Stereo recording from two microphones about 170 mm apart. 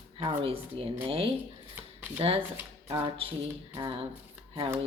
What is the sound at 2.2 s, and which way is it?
Speech, 35° right (ahead or behind).